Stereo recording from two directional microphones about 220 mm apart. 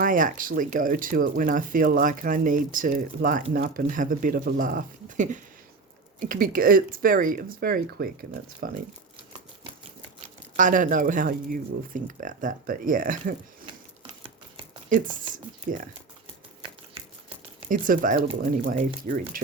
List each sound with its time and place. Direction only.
0.0 s speech: 35° right (ahead or behind)
10.6 s speech: 35° right (ahead or behind)
14.8 s speech: 35° right (ahead or behind)
17.7 s speech: 35° right (ahead or behind)